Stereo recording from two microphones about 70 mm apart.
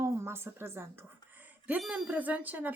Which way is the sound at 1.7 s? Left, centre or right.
Centre.